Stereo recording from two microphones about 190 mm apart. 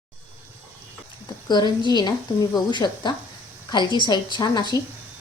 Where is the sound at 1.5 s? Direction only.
20° left (ahead or behind).